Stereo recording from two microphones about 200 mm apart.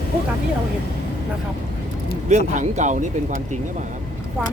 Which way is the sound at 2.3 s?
35° right (ahead or behind).